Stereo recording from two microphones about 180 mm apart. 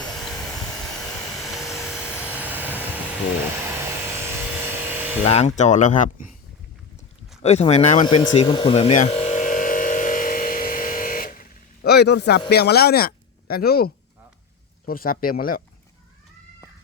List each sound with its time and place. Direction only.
0.0 s vehicle: centre (ahead or behind)
0.9 s helicopter: centre (ahead or behind)
3.8 s a sound: 15° right (ahead or behind)
5.2 s speech: 35° left (ahead or behind)
7.4 s speech: 35° left (ahead or behind)
8.0 s a sound: 25° left (ahead or behind); by 12.4 s 70° left (ahead or behind)
12.5 s speech: 65° left (ahead or behind)